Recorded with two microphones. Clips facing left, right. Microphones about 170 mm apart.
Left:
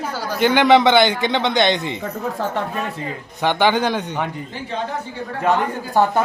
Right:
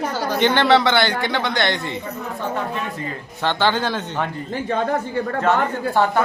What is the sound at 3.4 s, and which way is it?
Speech, 15° left (ahead or behind).